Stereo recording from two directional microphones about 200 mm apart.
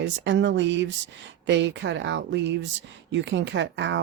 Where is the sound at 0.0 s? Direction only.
65° right (ahead or behind).